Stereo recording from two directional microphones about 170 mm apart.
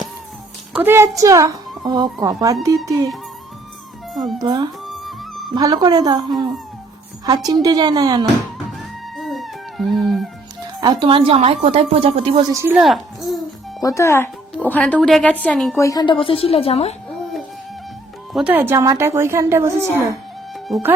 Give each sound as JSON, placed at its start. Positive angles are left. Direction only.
{"t": 0.7, "sound": "a woman's voice", "side_deg": -10}
{"t": 4.1, "sound": "speech", "side_deg": 0}
{"t": 4.4, "sound": "a woman's voice", "side_deg": -25}
{"t": 4.9, "sound": "music", "side_deg": 0}
{"t": 5.5, "sound": "a woman's voice", "side_deg": -25}
{"t": 7.3, "sound": "a woman's voice", "side_deg": -25}
{"t": 9.1, "sound": "cat", "side_deg": 0}
{"t": 10.8, "sound": "a woman's voice", "side_deg": -25}
{"t": 12.5, "sound": "speech", "side_deg": -15}
{"t": 12.8, "sound": "music", "side_deg": 0}
{"t": 13.8, "sound": "a woman's voice", "side_deg": 15}
{"t": 15.8, "sound": "a woman's voice", "side_deg": 20}
{"t": 18.3, "sound": "speech", "side_deg": -10}